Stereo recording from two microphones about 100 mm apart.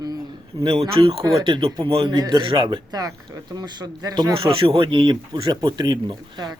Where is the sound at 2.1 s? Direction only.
50° right (ahead or behind).